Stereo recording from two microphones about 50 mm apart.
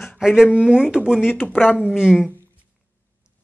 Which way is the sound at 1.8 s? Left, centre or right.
Centre.